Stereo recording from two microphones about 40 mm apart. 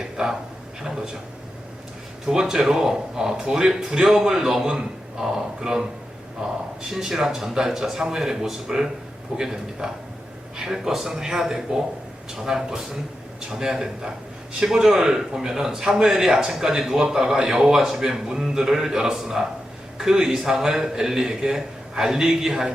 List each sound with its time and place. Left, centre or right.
0.8 s a man's voice: centre
2.2 s a man's voice: centre
6.9 s a man's voice: centre